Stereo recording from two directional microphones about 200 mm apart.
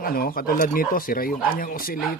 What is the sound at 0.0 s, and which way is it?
Speech, 50° left (ahead or behind).